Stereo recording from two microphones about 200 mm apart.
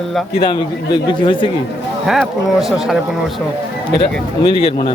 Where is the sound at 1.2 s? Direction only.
25° left (ahead or behind).